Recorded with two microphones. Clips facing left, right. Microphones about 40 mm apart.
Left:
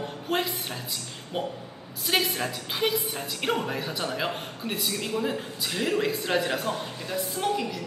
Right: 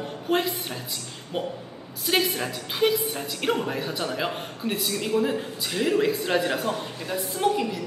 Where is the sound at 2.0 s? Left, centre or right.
Centre.